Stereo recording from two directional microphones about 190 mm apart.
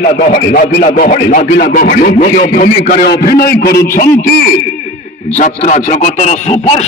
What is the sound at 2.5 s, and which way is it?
Speech, 40° left (ahead or behind).